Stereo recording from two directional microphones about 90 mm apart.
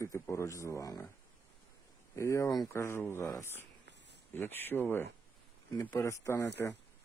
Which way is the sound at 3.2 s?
40° left (ahead or behind).